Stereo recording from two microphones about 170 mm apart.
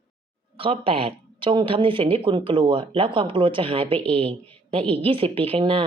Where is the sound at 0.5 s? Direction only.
30° right (ahead or behind).